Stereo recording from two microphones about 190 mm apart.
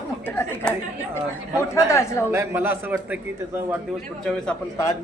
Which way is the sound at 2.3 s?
15° right (ahead or behind).